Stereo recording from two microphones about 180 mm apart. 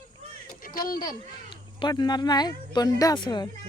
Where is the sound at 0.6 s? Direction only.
50° left (ahead or behind).